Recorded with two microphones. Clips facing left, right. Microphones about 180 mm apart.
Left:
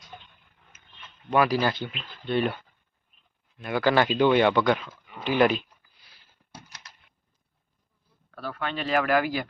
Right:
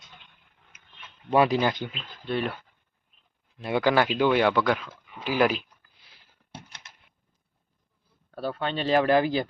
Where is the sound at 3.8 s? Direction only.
10° right (ahead or behind).